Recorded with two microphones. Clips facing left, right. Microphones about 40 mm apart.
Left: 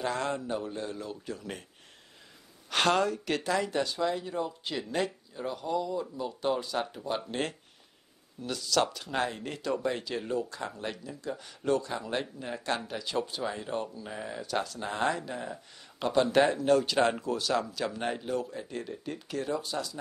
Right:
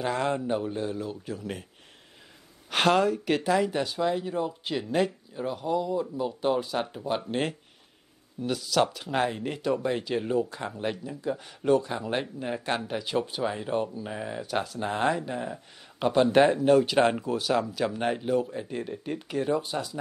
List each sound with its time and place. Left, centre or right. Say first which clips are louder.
0.0 s speech: right 4 dB; centre
2.7 s speech: right 3 dB; centre; by 20.0 s right